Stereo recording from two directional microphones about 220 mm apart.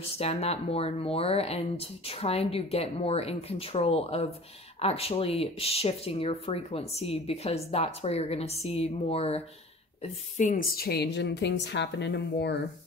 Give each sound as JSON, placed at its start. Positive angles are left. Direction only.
{"t": 0.2, "sound": "a woman's voice", "side_deg": 25}